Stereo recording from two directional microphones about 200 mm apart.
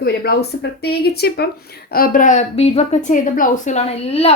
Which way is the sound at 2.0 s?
40° left (ahead or behind).